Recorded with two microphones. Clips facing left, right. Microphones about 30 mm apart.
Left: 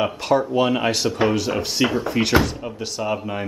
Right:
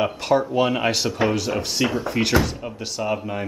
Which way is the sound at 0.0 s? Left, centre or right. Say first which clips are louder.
Even; centre.